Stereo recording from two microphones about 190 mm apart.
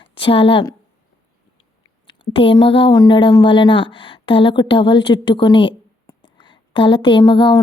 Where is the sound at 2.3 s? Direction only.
25° left (ahead or behind).